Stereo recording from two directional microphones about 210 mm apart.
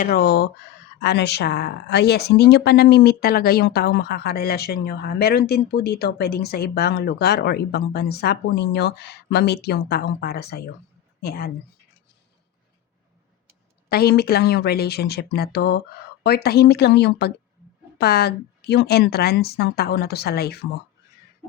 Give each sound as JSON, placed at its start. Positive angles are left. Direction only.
{"t": 0.0, "sound": "speech", "side_deg": 45}
{"t": 13.9, "sound": "speech", "side_deg": 45}